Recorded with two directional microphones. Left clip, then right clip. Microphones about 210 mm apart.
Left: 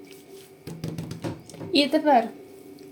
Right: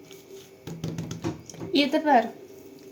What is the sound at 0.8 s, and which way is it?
Music, 5° left (ahead or behind).